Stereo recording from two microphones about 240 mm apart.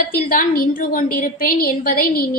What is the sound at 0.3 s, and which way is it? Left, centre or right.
A woman's voice, left.